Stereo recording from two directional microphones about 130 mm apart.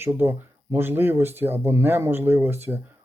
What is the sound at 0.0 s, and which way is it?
Speech, 20° right (ahead or behind).